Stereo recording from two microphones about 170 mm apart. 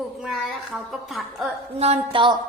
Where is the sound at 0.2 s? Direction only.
5° right (ahead or behind).